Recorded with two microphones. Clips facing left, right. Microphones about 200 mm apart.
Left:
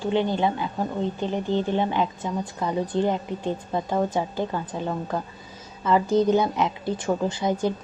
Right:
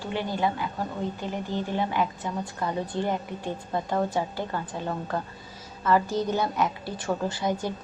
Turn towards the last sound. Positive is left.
turn(degrees=20)  # may be behind; listen again after turning